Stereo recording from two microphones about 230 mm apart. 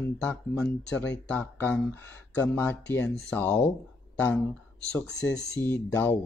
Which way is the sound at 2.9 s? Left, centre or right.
Centre.